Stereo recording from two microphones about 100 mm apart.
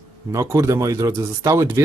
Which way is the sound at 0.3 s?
30° right (ahead or behind).